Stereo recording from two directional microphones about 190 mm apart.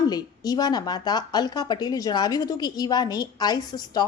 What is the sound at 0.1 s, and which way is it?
A woman's voice, 20° left (ahead or behind).